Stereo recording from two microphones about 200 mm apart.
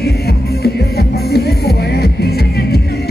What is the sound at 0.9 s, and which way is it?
Music, 55° left (ahead or behind).